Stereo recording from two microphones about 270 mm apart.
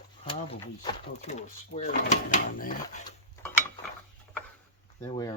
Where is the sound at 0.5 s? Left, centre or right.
Centre.